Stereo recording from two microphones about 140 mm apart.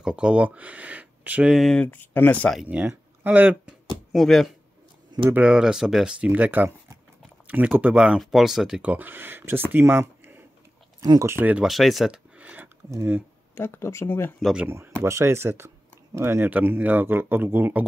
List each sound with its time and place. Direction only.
0.0 s speech: 5° right (ahead or behind)
1.9 s speech: 15° left (ahead or behind)
2.5 s speech: 5° right (ahead or behind)
4.1 s speech: centre (ahead or behind); by 13.2 s 15° right (ahead or behind)
13.6 s speech: 20° left (ahead or behind)
14.4 s speech: 5° right (ahead or behind)
15.0 s speech: 20° right (ahead or behind)